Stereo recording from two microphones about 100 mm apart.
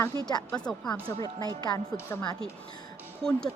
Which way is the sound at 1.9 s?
20° left (ahead or behind).